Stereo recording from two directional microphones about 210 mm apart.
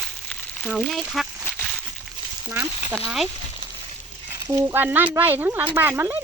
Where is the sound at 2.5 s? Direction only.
10° right (ahead or behind).